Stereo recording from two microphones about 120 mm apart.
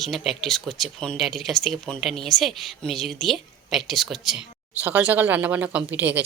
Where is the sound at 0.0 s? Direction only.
Centre (ahead or behind).